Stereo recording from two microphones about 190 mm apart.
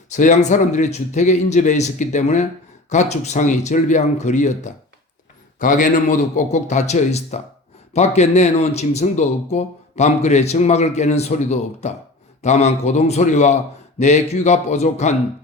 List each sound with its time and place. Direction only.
0.1 s speech: 40° left (ahead or behind)